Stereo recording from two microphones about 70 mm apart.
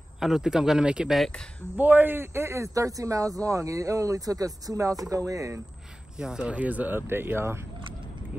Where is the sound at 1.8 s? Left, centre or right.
Right.